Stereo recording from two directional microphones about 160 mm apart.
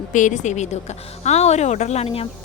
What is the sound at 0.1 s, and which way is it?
A woman's voice, 50° left (ahead or behind).